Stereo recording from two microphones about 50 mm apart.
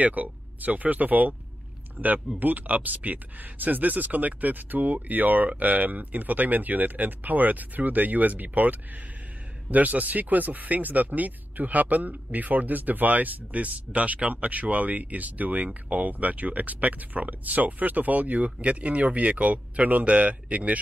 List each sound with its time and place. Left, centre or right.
0.0 s speech: right